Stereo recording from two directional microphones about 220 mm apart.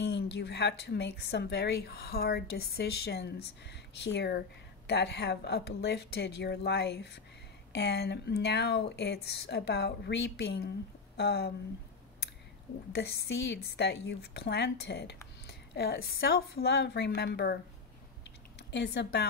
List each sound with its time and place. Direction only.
0.0 s a woman's voice: 50° left (ahead or behind)
12.9 s a woman's voice: 45° left (ahead or behind)
18.2 s a sound: 50° left (ahead or behind)